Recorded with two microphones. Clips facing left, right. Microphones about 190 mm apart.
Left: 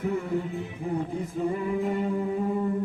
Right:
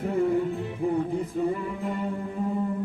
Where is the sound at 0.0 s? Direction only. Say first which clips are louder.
Right 3 dB; 50° right (ahead or behind).